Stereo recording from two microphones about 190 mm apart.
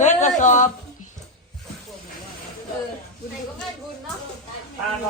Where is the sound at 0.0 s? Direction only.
40° left (ahead or behind).